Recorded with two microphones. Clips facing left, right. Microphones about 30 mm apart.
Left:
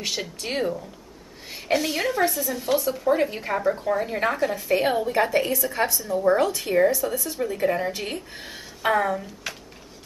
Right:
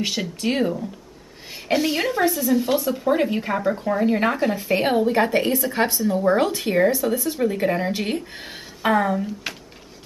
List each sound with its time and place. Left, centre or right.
0.0 s speech: centre; by 8.6 s right
8.8 s speech: centre